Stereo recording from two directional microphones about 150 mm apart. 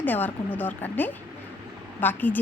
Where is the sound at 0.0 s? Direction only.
10° left (ahead or behind).